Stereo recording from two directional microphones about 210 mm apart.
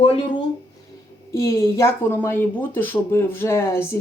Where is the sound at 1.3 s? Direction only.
15° left (ahead or behind).